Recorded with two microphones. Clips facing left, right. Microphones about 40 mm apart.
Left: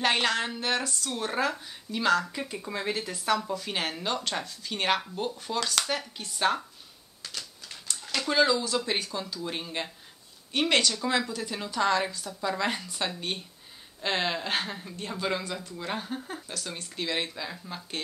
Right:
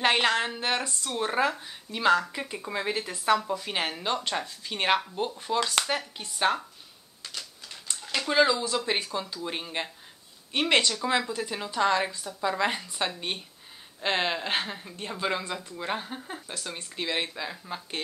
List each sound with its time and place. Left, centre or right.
0.0 s speech: right
8.1 s speech: centre